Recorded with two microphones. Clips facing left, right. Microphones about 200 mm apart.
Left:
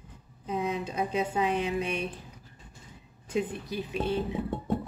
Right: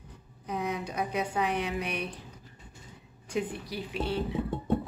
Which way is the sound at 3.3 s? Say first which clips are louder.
Left 2 dB; 20° left (ahead or behind).